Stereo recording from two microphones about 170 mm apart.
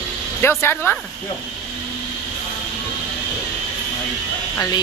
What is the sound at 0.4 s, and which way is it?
Speech, 15° left (ahead or behind).